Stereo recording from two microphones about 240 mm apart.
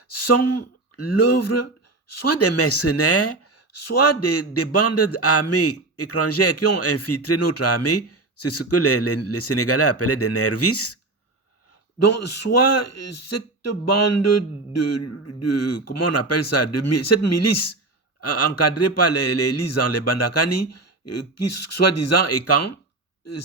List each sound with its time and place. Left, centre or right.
0.1 s a man's voice: left
3.8 s a man's voice: left
11.9 s a man's voice: left